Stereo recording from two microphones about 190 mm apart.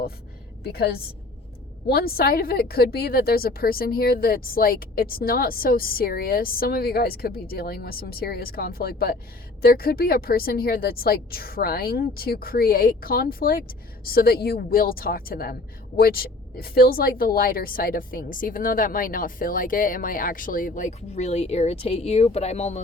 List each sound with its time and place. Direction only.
0.6 s a woman's voice: 55° left (ahead or behind); by 22.8 s 35° left (ahead or behind)